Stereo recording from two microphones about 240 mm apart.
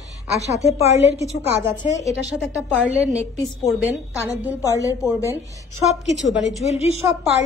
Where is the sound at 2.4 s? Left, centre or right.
Centre.